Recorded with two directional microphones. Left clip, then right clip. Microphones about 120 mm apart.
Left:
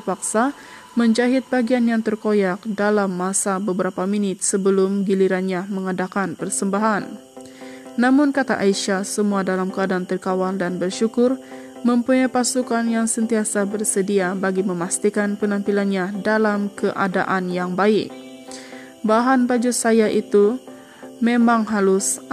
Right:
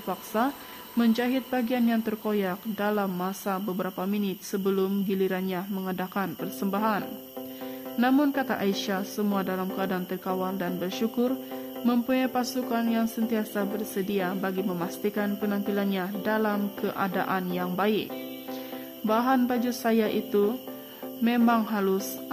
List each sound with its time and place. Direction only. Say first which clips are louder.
0.0 s a woman's voice: left 7 dB; 45° left (ahead or behind)
8.1 s a woman's voice: left 8 dB; 35° left (ahead or behind)